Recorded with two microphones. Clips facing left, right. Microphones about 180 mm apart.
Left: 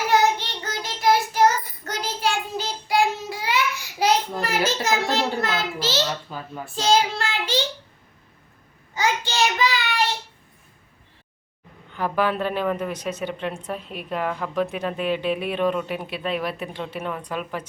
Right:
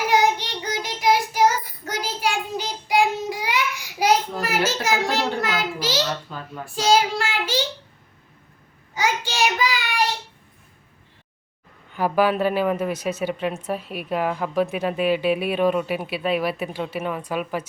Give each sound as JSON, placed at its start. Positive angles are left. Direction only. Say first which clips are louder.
{"t": 0.1, "sound": "child singing", "louder": "left 1 dB", "side_deg": -15}
{"t": 4.4, "sound": "a sound", "louder": "even", "side_deg": -10}
{"t": 6.3, "sound": "a child's voice", "louder": "left 1 dB", "side_deg": 5}
{"t": 6.7, "sound": "speech", "louder": "right 1 dB", "side_deg": -10}
{"t": 9.0, "sound": "child singing", "louder": "even", "side_deg": -10}
{"t": 11.9, "sound": "speech", "louder": "right 3 dB", "side_deg": -10}